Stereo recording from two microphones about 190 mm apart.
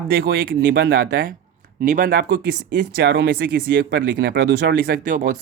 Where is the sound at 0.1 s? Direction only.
55° right (ahead or behind).